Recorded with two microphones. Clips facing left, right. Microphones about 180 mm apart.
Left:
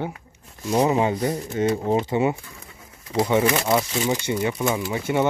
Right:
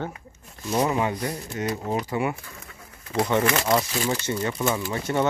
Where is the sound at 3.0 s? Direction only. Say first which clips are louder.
Left 2 dB; 20° left (ahead or behind).